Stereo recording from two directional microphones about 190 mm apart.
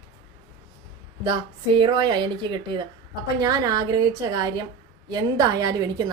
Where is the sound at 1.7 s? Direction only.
25° right (ahead or behind).